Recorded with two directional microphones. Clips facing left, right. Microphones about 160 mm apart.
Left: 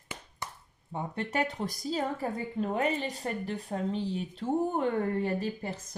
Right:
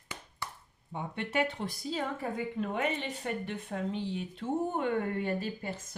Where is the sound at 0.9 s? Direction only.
40° left (ahead or behind).